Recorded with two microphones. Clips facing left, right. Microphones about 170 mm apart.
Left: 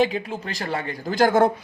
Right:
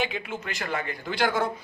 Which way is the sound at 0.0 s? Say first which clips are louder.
Left 8 dB; 35° left (ahead or behind).